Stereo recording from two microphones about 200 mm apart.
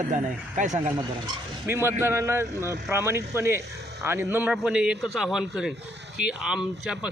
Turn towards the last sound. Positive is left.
turn(degrees=-5)  # may be behind; listen again after turning